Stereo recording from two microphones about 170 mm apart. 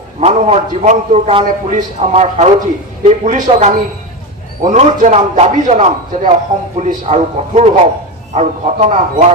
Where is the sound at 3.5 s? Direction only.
35° right (ahead or behind).